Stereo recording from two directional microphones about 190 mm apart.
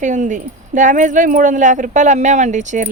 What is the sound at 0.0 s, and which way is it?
Speech, 40° right (ahead or behind).